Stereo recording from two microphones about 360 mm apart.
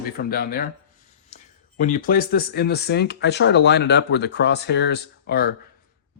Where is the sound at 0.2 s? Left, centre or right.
Left.